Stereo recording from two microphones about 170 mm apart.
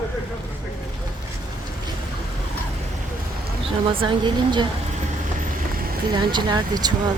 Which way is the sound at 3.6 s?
30° right (ahead or behind).